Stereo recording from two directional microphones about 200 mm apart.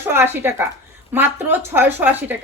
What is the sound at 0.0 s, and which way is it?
A woman's voice, 10° right (ahead or behind).